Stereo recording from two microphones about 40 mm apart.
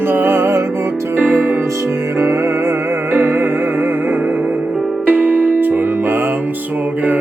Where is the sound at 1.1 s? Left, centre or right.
Right.